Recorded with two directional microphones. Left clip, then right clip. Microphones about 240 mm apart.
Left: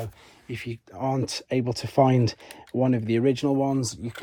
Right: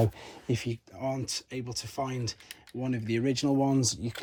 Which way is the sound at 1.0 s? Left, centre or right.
Centre.